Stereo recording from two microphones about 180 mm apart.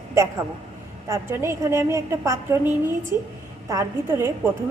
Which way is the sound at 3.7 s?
15° right (ahead or behind).